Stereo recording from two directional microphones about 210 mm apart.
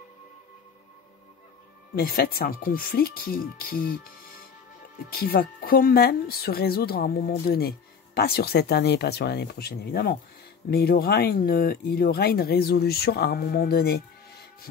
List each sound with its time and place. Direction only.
2.0 s speech: 45° left (ahead or behind)
5.1 s speech: 45° left (ahead or behind)